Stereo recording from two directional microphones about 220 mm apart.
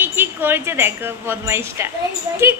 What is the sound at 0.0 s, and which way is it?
A woman's voice, 10° right (ahead or behind).